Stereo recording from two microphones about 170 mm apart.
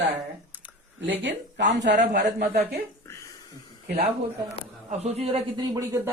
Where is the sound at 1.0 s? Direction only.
90° right.